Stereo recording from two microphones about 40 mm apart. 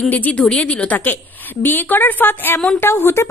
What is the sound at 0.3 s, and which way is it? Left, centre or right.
Speech, left.